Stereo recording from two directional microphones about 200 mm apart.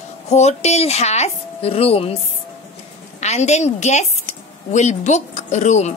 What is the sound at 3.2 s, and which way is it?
A woman's voice, 35° left (ahead or behind).